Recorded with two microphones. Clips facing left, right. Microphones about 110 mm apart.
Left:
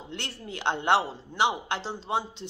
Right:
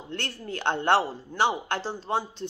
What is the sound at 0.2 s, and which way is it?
A man's voice, 15° left (ahead or behind).